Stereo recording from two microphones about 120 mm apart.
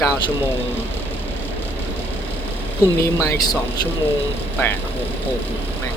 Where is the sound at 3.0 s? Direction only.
25° left (ahead or behind).